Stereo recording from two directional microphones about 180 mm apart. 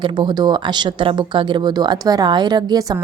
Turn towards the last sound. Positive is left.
turn(degrees=-20)  # may be behind; listen again after turning